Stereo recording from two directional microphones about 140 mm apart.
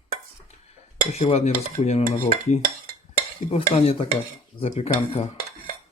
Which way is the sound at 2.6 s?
90° right.